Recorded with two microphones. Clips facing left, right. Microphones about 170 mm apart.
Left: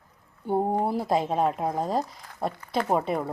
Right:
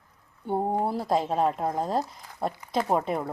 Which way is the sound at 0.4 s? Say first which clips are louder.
Left 2 dB; 5° left (ahead or behind).